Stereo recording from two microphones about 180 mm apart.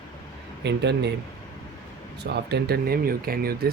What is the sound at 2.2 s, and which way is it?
Speech, 65° right (ahead or behind).